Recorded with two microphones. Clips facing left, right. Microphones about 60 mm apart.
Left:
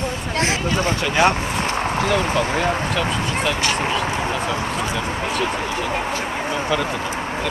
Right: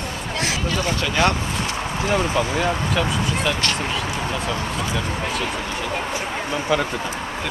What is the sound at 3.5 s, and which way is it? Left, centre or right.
Speech, centre.